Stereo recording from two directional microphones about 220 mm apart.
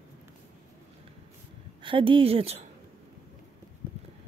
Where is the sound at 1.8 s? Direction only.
20° right (ahead or behind).